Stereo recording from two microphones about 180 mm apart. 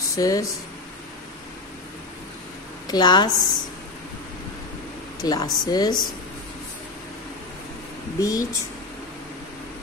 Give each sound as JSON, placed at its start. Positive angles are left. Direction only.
{"t": 0.1, "sound": "speech", "side_deg": 20}
{"t": 2.9, "sound": "a woman's voice", "side_deg": 25}
{"t": 5.2, "sound": "a woman's voice", "side_deg": 20}
{"t": 8.2, "sound": "a woman's voice", "side_deg": 20}